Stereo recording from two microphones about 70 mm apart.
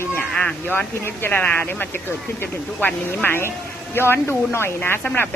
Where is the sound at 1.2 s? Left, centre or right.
Left.